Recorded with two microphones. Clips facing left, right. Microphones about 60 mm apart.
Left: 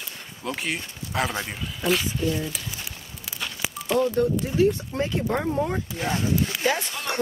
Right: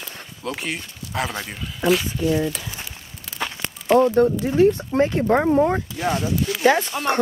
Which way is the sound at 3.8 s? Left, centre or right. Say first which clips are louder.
Right 7 dB; right.